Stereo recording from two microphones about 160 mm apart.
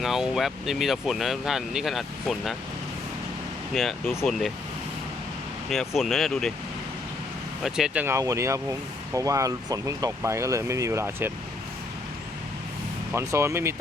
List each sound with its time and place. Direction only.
0.0 s speech: centre (ahead or behind)
4.0 s speech: 15° left (ahead or behind)
4.3 s speech: centre (ahead or behind)
5.6 s speech: centre (ahead or behind)
7.6 s speech: 5° right (ahead or behind)
13.1 s speech: 15° right (ahead or behind)